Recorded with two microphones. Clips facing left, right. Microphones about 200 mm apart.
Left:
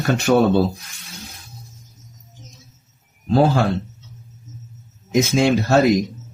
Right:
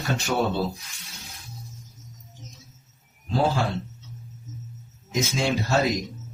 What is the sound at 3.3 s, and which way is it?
Speech, 65° left (ahead or behind).